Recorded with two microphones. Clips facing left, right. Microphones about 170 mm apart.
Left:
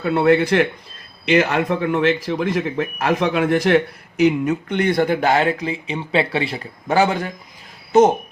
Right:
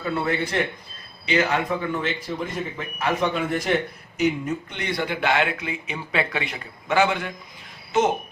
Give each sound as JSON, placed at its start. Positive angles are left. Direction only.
{"t": 0.0, "sound": "speech", "side_deg": 70}
{"t": 4.2, "sound": "speech", "side_deg": 65}